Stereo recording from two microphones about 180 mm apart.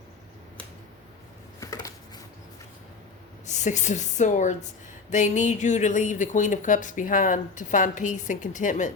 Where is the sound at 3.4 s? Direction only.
40° left (ahead or behind).